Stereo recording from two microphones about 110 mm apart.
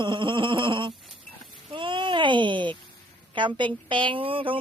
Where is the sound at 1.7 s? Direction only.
50° right (ahead or behind).